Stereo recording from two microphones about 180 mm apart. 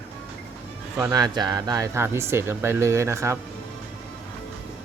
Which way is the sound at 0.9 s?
20° right (ahead or behind).